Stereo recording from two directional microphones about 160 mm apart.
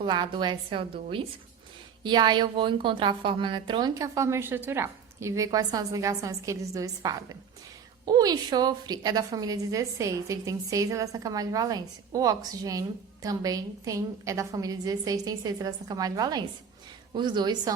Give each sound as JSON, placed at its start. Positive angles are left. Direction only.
{"t": 0.0, "sound": "a woman's voice", "side_deg": -30}
{"t": 2.0, "sound": "a woman's voice", "side_deg": -25}